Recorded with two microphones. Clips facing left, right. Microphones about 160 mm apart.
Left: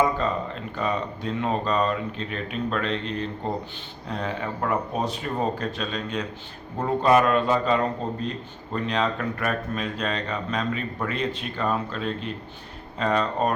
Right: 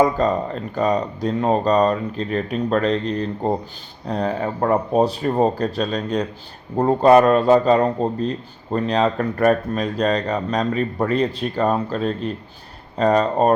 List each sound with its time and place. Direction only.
0.2 s speech: 40° right (ahead or behind)